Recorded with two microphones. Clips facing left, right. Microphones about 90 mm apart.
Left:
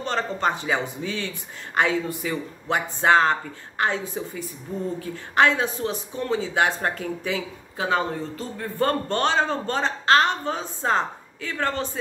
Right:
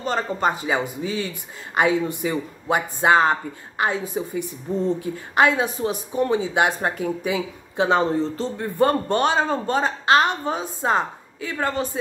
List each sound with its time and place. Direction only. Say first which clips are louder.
0.0 s a woman's voice: right 2 dB; 10° right (ahead or behind)
4.4 s a woman's voice: right 6 dB; 20° right (ahead or behind)
8.7 s a woman's voice: right 4 dB; 15° right (ahead or behind)